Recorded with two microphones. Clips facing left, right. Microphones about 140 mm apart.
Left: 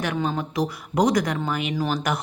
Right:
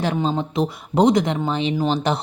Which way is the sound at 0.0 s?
25° right (ahead or behind).